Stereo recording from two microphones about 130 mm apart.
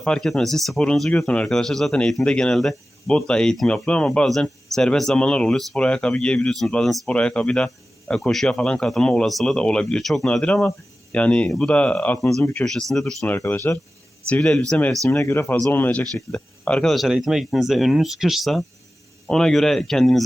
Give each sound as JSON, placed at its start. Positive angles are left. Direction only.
{"t": 0.0, "sound": "speech", "side_deg": 5}
{"t": 13.3, "sound": "speech", "side_deg": 20}
{"t": 14.3, "sound": "speech", "side_deg": 5}